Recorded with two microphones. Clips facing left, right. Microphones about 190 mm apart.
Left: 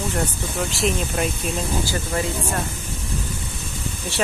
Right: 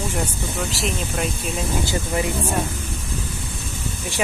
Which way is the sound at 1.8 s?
20° right (ahead or behind).